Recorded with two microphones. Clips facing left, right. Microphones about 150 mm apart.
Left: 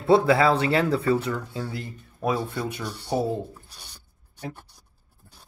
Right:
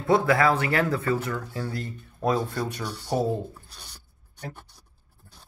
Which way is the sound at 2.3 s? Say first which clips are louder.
Right 1 dB; 5° left (ahead or behind).